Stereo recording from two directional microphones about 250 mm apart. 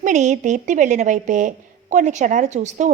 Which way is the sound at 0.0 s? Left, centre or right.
Right.